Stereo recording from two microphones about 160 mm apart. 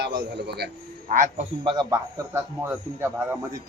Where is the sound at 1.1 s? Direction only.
55° right (ahead or behind).